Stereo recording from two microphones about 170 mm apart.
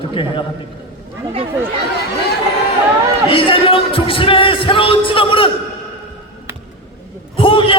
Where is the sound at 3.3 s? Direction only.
30° left (ahead or behind).